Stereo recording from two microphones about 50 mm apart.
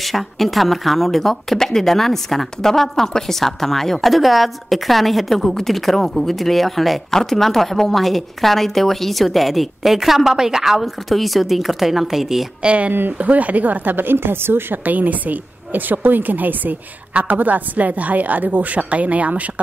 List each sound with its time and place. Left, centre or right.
0.0 s speech: centre
12.6 s a woman's voice: right